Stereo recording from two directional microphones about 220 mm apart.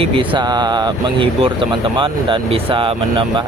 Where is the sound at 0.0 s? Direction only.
25° right (ahead or behind).